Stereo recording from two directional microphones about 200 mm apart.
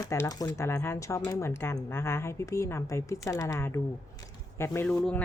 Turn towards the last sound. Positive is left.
turn(degrees=5)  # may be behind; listen again after turning